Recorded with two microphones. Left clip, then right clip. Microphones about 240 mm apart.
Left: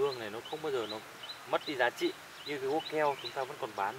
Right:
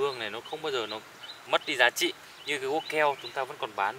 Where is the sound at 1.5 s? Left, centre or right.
Centre.